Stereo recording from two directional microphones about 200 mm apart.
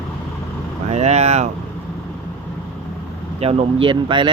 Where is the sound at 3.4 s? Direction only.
30° right (ahead or behind).